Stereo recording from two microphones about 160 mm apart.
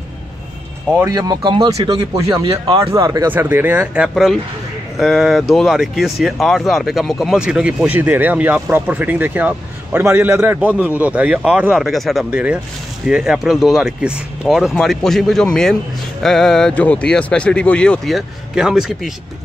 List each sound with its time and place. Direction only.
0.9 s a man's voice: 20° right (ahead or behind); by 19.1 s centre (ahead or behind)